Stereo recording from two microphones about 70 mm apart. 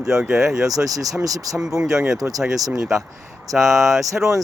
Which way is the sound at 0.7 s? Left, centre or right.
Right.